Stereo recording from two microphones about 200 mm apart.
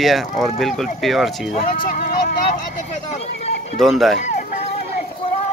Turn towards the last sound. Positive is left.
turn(degrees=35)  # may be behind; listen again after turning